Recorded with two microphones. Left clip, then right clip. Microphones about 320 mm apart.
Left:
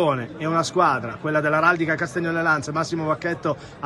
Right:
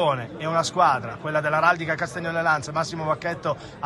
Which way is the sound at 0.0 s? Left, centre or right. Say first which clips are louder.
Left 1 dB; centre.